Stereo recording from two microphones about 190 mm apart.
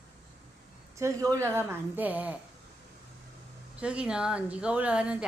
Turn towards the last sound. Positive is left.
turn(degrees=-5)  # may be behind; listen again after turning